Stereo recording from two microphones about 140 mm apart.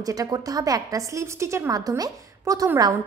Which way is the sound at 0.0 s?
25° right (ahead or behind).